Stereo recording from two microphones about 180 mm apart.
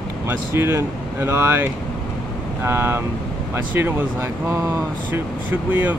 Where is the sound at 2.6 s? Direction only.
10° right (ahead or behind).